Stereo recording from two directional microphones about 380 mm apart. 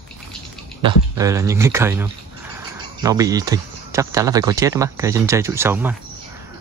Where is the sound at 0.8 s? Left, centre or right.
Centre.